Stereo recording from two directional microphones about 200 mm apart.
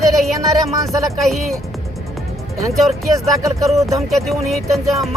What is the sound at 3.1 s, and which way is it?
Speech, 15° right (ahead or behind).